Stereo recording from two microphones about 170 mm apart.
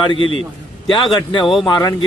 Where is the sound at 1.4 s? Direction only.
Centre (ahead or behind).